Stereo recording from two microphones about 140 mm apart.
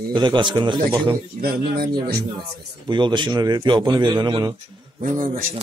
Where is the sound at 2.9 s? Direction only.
35° right (ahead or behind).